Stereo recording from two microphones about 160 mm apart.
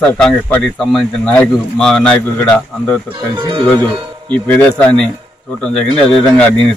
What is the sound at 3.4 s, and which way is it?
Speech, 30° right (ahead or behind).